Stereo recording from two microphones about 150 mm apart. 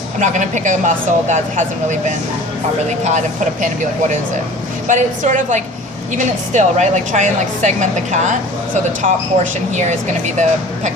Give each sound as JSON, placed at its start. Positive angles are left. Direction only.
{"t": 0.2, "sound": "a woman's voice", "side_deg": -55}
{"t": 4.9, "sound": "a woman's voice", "side_deg": -55}